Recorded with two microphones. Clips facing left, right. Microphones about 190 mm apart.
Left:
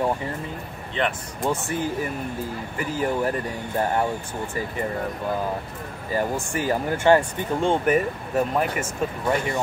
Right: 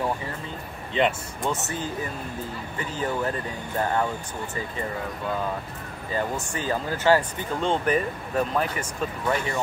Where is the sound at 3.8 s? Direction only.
25° left (ahead or behind).